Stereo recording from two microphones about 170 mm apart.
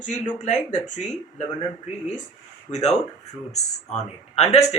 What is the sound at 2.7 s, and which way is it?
Speech, 40° left (ahead or behind).